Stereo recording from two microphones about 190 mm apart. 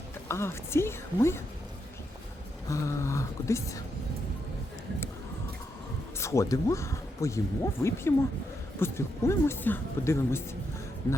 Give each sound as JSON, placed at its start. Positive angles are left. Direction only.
{"t": 0.3, "sound": "speech", "side_deg": 15}
{"t": 2.6, "sound": "speech", "side_deg": 15}
{"t": 6.1, "sound": "speech", "side_deg": 15}